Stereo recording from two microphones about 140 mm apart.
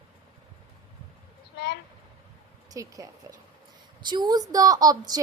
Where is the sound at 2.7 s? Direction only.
25° right (ahead or behind).